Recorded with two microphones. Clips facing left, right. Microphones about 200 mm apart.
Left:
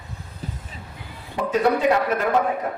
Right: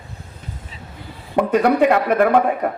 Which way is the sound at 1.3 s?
60° right (ahead or behind).